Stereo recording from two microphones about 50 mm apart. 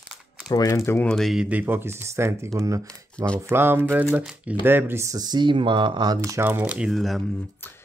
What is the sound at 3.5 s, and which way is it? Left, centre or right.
Speech, right.